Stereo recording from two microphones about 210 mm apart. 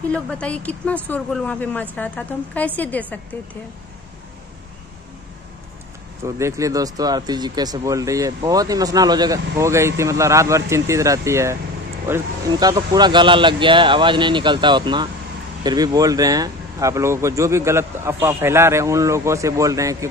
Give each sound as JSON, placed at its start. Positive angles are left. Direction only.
{"t": 0.1, "sound": "a woman's voice", "side_deg": 5}
{"t": 6.2, "sound": "speech", "side_deg": -15}